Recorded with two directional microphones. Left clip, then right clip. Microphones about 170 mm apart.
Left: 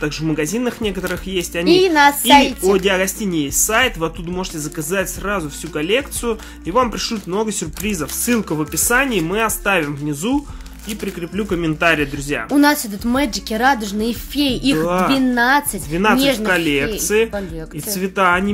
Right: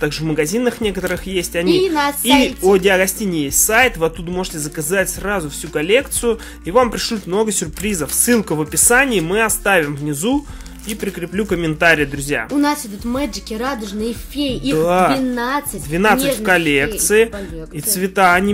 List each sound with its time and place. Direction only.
0.0 s speech: 20° right (ahead or behind)
1.7 s a woman's voice: 40° left (ahead or behind)
2.3 s speech: 20° right (ahead or behind)
12.5 s a woman's voice: 45° left (ahead or behind)
14.8 s speech: 25° right (ahead or behind)
15.1 s a woman's voice: 40° left (ahead or behind)
15.9 s speech: 20° right (ahead or behind)